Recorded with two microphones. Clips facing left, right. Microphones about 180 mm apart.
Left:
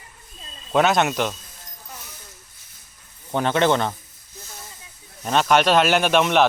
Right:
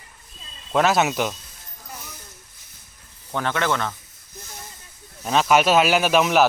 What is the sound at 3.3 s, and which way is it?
Speech, 20° left (ahead or behind).